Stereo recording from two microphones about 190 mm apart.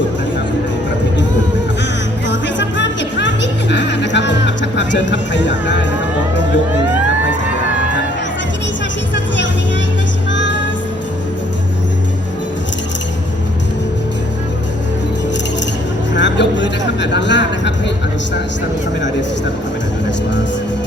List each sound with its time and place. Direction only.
2.2 s music: 70° left (ahead or behind)
10.3 s music: 70° left (ahead or behind)
16.1 s a sound: 70° left (ahead or behind)